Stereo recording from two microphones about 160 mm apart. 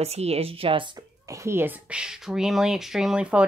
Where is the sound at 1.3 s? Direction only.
15° right (ahead or behind).